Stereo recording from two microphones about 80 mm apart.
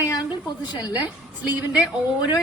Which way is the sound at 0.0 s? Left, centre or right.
Left.